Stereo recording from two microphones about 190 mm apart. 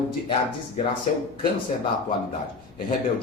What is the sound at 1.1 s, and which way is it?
Speech, 40° left (ahead or behind).